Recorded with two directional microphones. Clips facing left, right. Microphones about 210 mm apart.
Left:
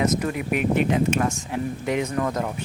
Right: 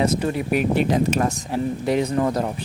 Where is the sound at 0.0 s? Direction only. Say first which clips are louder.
Right 2 dB; 30° right (ahead or behind).